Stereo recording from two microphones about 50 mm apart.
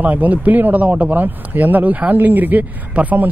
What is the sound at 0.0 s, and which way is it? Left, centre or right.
Speech, right.